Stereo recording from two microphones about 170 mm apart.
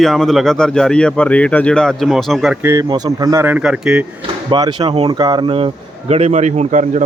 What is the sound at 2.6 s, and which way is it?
Speech, 20° right (ahead or behind).